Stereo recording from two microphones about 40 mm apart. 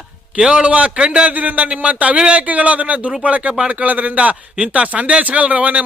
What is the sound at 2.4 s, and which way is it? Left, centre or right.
Speech, right.